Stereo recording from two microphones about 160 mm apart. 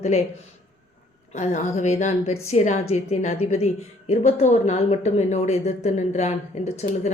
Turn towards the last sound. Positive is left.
turn(degrees=45)  # may be behind; listen again after turning